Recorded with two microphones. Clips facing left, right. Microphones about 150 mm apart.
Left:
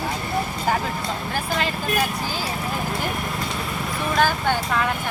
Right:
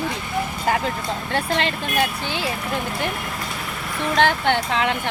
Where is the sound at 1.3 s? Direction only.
90° right.